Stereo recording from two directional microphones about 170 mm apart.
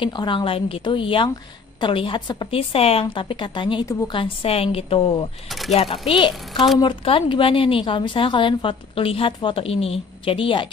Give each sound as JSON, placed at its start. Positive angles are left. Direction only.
{"t": 0.0, "sound": "a woman's voice", "side_deg": 30}
{"t": 3.8, "sound": "a woman's voice", "side_deg": 20}
{"t": 4.2, "sound": "a woman's voice", "side_deg": 35}
{"t": 6.5, "sound": "speech", "side_deg": 0}
{"t": 6.8, "sound": "a woman's voice", "side_deg": 30}